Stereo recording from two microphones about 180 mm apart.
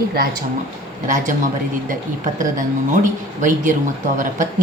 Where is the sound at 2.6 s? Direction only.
45° right (ahead or behind).